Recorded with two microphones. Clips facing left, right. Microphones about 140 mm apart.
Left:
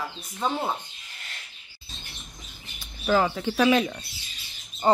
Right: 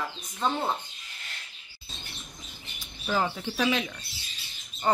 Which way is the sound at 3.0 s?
75° left (ahead or behind).